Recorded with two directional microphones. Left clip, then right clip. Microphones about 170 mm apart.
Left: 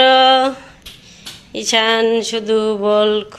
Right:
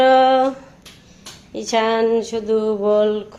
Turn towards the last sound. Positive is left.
turn(degrees=5)  # may be behind; listen again after turning